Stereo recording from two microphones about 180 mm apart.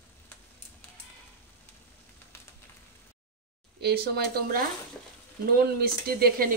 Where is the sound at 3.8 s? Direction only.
60° right (ahead or behind).